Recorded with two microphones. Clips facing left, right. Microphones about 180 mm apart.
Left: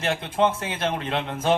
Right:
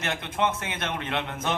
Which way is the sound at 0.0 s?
30° left (ahead or behind).